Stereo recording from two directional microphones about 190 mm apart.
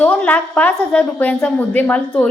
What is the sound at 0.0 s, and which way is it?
A woman's voice, 5° left (ahead or behind).